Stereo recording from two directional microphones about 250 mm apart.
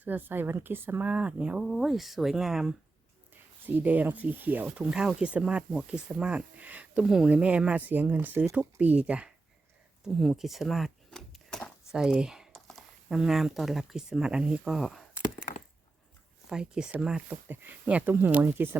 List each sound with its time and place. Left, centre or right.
0.0 s speech: centre
16.5 s speech: centre